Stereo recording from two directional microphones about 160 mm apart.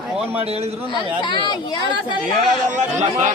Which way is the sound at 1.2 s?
30° left (ahead or behind).